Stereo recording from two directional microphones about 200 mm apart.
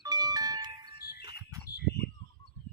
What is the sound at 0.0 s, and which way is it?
Music, 20° right (ahead or behind).